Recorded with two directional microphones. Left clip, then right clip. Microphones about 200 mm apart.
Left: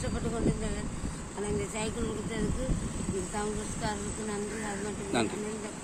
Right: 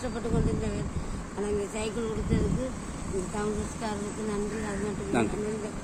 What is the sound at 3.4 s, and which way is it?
Speech, 15° left (ahead or behind).